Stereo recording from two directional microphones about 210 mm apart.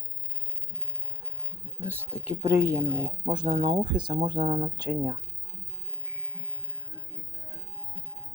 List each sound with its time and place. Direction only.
1.8 s speech: 10° right (ahead or behind)
3.5 s speech: 30° right (ahead or behind)